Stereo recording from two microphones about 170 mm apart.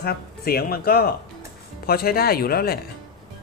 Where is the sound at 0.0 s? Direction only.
65° left (ahead or behind).